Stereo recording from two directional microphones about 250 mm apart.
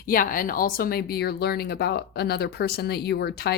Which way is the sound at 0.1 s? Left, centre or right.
Left.